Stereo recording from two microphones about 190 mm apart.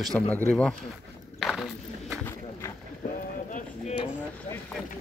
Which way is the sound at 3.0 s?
45° left (ahead or behind).